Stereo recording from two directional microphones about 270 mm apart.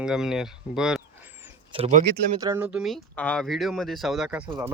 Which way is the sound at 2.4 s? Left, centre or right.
Centre.